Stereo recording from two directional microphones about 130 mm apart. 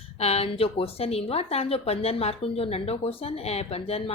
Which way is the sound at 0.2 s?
50° left (ahead or behind).